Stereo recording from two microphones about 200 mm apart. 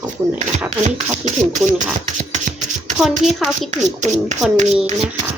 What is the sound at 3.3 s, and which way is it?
Speech, centre (ahead or behind).